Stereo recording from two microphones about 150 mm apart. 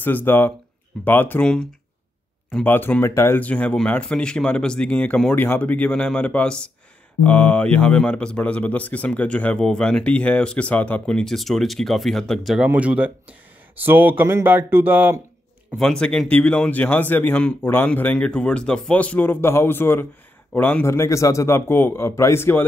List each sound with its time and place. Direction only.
0.0 s speech: 15° left (ahead or behind); by 15.2 s 15° right (ahead or behind)
15.8 s speech: 5° left (ahead or behind)